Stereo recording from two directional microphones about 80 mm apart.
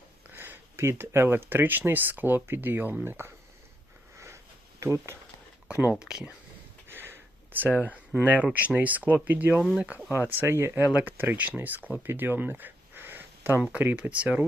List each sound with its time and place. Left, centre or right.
0.3 s speech: right
4.8 s speech: right
6.0 s speech: centre
6.8 s a sound: right
8.5 s speech: centre